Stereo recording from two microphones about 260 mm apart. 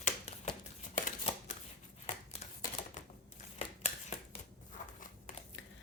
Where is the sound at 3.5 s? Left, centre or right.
Left.